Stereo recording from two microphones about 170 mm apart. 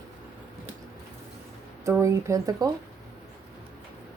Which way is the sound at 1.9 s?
15° right (ahead or behind).